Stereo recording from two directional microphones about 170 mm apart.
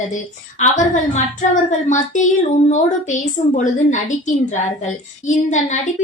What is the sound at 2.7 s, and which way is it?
A woman's voice, 45° left (ahead or behind).